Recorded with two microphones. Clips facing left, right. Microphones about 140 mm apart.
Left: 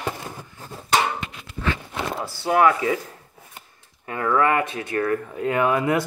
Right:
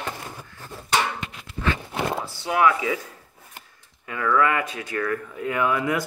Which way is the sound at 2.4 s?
40° left (ahead or behind).